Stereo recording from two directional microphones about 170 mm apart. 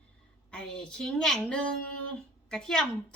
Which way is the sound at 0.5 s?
5° left (ahead or behind).